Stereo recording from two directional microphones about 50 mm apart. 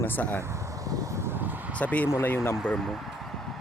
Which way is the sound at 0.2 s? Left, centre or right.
Left.